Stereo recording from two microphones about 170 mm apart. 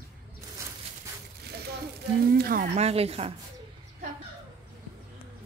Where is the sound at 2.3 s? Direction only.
60° right (ahead or behind).